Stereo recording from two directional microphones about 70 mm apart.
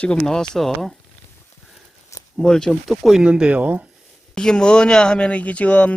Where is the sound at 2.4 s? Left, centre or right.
Centre.